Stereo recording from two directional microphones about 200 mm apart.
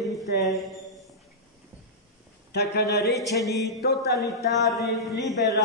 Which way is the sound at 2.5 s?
55° left (ahead or behind).